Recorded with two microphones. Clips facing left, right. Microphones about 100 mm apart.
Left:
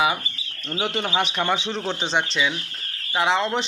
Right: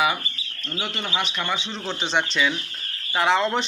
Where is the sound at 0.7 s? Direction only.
40° left (ahead or behind).